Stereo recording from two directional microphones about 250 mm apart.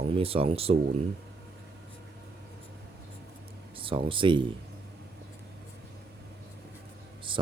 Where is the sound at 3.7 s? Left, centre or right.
Right.